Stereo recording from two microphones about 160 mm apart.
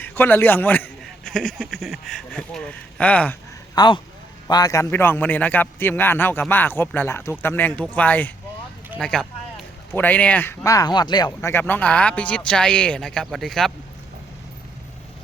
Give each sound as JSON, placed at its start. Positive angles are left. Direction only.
{"t": 0.0, "sound": "a man's voice", "side_deg": 15}
{"t": 3.8, "sound": "a man's voice", "side_deg": 30}
{"t": 11.3, "sound": "a man's voice", "side_deg": 15}